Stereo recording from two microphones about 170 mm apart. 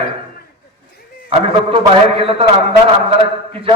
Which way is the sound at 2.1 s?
35° right (ahead or behind).